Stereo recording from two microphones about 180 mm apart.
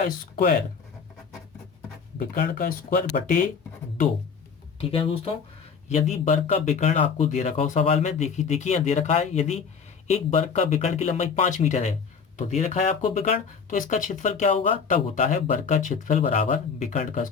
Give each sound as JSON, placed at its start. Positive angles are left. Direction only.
{"t": 2.1, "sound": "speech", "side_deg": 55}
{"t": 4.8, "sound": "speech", "side_deg": 30}